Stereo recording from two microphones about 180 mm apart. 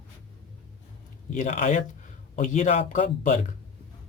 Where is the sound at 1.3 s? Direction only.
40° left (ahead or behind).